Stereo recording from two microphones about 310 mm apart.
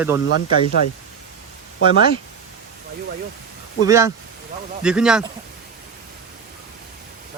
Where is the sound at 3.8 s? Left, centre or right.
Centre.